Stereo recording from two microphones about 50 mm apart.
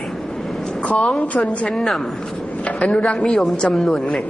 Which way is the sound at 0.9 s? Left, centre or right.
Centre.